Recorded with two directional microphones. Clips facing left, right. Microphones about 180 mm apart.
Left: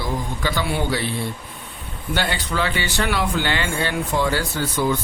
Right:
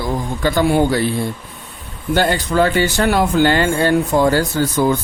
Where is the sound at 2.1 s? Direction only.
45° right (ahead or behind).